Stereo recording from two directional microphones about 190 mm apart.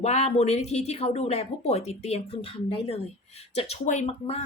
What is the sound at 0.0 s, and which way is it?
Speech, 35° left (ahead or behind).